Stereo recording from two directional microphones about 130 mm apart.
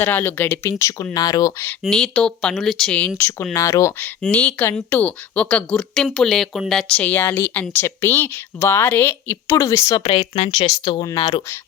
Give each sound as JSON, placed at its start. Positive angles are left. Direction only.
{"t": 0.0, "sound": "speech", "side_deg": 15}
{"t": 1.8, "sound": "speech", "side_deg": 5}
{"t": 3.5, "sound": "speech", "side_deg": 25}
{"t": 4.2, "sound": "speech", "side_deg": 10}
{"t": 10.0, "sound": "speech", "side_deg": 40}
{"t": 11.1, "sound": "speech", "side_deg": 30}